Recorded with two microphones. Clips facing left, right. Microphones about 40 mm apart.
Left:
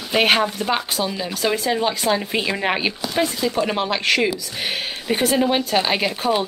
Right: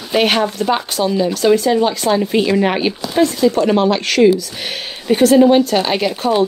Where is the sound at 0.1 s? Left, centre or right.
Centre.